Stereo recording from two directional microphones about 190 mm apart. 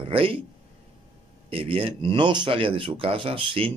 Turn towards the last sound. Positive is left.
turn(degrees=-30)  # may be behind; listen again after turning